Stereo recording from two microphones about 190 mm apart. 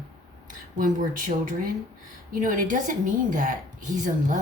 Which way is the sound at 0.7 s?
40° right (ahead or behind).